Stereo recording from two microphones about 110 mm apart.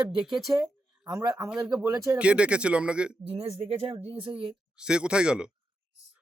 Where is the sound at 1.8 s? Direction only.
30° right (ahead or behind).